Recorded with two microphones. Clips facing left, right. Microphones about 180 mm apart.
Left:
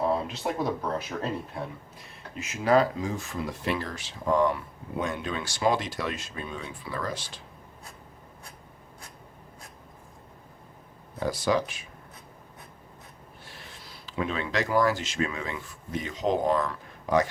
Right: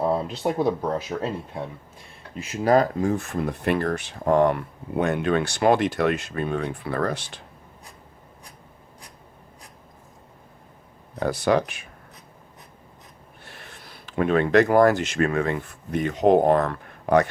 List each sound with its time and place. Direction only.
0.1 s speech: 35° right (ahead or behind)
2.3 s speech: 35° right (ahead or behind); by 7.4 s 65° right (ahead or behind)
11.2 s speech: 65° right (ahead or behind)
13.4 s speech: 60° right (ahead or behind)